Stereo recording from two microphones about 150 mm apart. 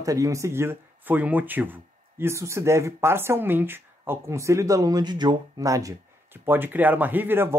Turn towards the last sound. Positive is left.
turn(degrees=-15)  # may be behind; listen again after turning